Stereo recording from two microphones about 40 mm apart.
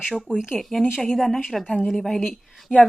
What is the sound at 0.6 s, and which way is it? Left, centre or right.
Speech, centre.